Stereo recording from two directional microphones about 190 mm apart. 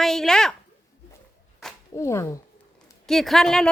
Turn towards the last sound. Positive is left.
turn(degrees=5)  # may be behind; listen again after turning